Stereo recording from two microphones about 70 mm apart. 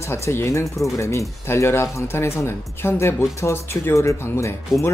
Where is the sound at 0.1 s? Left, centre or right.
Left.